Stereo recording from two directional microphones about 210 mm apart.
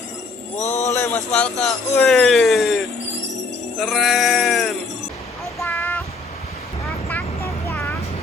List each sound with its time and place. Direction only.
0.6 s a sound: 35° left (ahead or behind)
0.9 s speech: 10° left (ahead or behind)
3.8 s sheep: centre (ahead or behind)
5.5 s child singing: 10° left (ahead or behind)